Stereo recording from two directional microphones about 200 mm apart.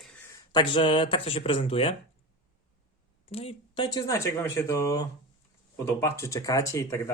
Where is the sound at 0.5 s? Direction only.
25° left (ahead or behind).